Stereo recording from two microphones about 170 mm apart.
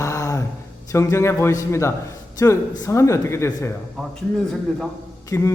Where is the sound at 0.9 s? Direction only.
15° left (ahead or behind).